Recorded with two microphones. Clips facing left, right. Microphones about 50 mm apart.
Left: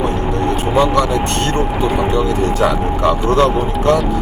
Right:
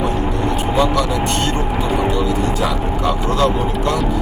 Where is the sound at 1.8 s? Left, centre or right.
Left.